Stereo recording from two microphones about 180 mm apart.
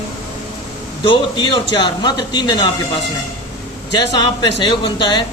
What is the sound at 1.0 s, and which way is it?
Speech, 25° left (ahead or behind).